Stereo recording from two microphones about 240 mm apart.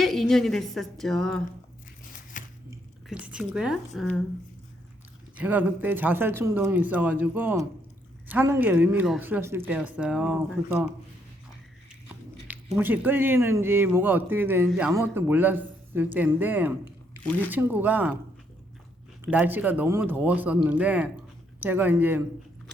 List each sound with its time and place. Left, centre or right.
0.0 s a woman's voice: centre
2.6 s squish: centre
3.9 s a woman's voice: centre
5.4 s speech: centre
12.7 s speech: centre
19.2 s a woman's voice: centre